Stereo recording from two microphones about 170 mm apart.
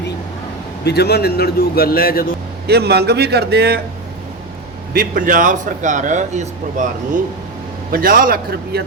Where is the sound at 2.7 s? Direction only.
70° right (ahead or behind).